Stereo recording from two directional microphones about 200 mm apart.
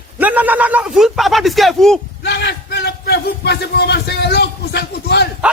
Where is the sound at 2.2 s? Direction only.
60° left (ahead or behind).